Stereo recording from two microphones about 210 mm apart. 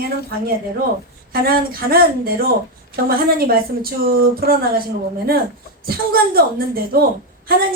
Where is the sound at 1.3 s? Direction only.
45° right (ahead or behind).